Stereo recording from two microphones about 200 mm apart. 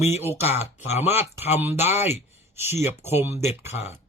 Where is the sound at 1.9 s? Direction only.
35° left (ahead or behind).